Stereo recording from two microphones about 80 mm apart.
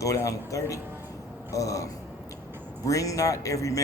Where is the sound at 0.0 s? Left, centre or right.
Left.